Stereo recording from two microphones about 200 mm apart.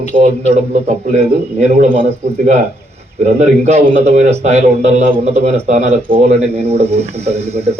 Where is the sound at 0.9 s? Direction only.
35° right (ahead or behind).